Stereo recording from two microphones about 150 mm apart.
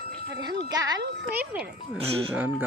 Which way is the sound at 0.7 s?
25° right (ahead or behind).